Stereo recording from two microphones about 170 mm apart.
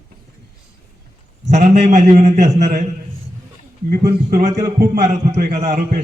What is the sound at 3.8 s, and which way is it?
Speech, 65° right (ahead or behind).